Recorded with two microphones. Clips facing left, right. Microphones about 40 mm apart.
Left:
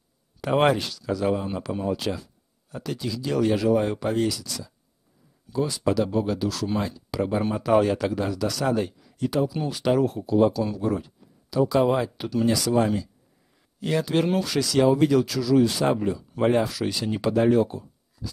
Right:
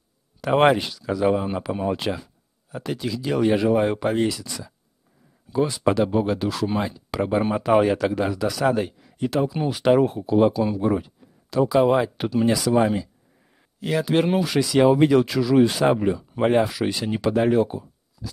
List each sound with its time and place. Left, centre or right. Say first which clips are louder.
0.5 s speech: right 3 dB; centre
9.4 s speech: right 3 dB; right
13.7 s speech: right 2 dB; centre
17.6 s a sound: right 4 dB; centre